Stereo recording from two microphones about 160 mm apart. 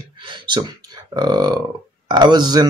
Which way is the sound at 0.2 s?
30° right (ahead or behind).